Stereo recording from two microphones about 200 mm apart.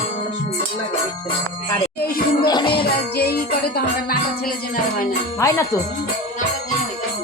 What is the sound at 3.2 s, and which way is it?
Music, 50° left (ahead or behind).